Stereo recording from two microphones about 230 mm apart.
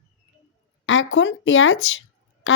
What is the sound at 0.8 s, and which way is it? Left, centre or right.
Speech, left.